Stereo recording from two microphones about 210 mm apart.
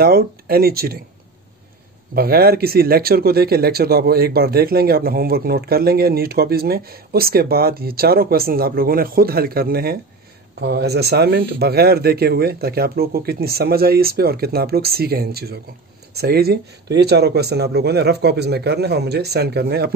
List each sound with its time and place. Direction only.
0.0 s speech: 45° right (ahead or behind)
2.1 s speech: 45° right (ahead or behind)